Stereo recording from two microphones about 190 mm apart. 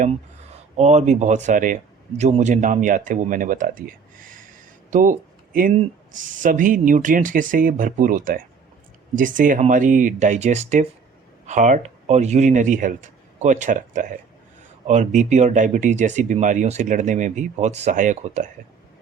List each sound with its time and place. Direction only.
0.8 s a man's voice: 35° right (ahead or behind)